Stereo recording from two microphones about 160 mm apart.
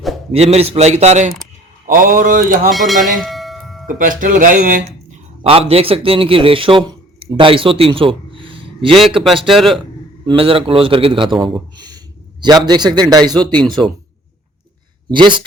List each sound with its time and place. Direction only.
0.3 s a man's voice: 40° right (ahead or behind)
1.9 s speech: 60° right (ahead or behind)
2.6 s speech: centre (ahead or behind)
3.2 s bell: centre (ahead or behind)
3.8 s speech: 55° right (ahead or behind)
5.4 s a man's voice: 40° right (ahead or behind)
9.5 s speech: centre (ahead or behind)
10.2 s a man's voice: 35° right (ahead or behind)
15.1 s a man's voice: 30° right (ahead or behind)